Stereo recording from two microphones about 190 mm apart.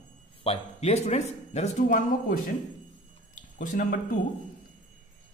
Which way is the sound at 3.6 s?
45° left (ahead or behind).